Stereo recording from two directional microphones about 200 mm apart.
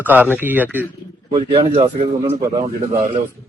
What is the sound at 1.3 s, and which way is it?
Speech, 25° right (ahead or behind).